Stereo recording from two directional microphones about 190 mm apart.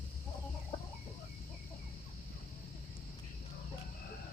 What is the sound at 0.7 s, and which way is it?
Chicken, 25° left (ahead or behind).